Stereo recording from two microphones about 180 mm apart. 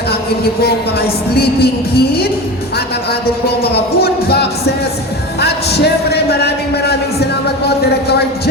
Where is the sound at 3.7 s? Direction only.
65° left (ahead or behind).